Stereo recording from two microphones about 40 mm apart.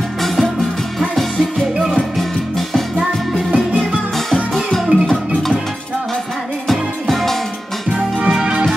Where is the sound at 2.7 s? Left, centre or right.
Centre.